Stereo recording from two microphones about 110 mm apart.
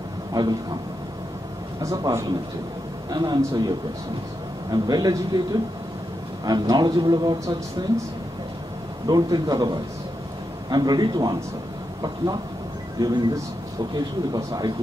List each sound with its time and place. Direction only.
0.3 s speech: 40° right (ahead or behind)
1.8 s speech: 30° right (ahead or behind)
9.0 s speech: 40° right (ahead or behind)
13.0 s speech: 40° right (ahead or behind)